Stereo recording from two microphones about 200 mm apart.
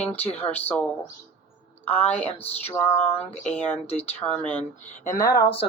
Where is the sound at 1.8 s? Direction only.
30° left (ahead or behind).